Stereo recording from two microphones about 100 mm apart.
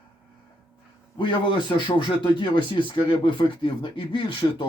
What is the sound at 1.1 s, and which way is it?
A man's voice, 55° left (ahead or behind).